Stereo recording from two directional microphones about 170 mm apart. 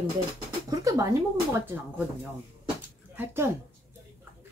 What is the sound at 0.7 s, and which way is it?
Speech, 20° right (ahead or behind).